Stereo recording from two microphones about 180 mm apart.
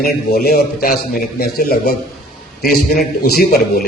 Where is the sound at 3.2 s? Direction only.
55° left (ahead or behind).